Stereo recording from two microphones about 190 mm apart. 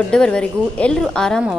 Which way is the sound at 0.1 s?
5° left (ahead or behind).